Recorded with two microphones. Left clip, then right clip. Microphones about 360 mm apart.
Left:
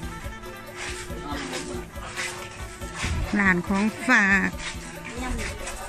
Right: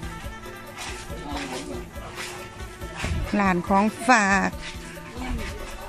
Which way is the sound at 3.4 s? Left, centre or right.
Centre.